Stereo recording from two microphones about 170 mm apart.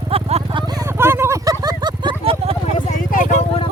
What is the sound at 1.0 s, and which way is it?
Vehicle, 15° right (ahead or behind).